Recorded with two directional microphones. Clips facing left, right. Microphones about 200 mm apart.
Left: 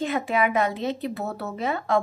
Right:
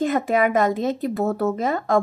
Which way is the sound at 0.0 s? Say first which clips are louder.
Right 4 dB; 45° right (ahead or behind).